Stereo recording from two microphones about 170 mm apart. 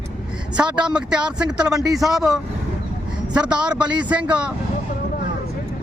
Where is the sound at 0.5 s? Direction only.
5° right (ahead or behind).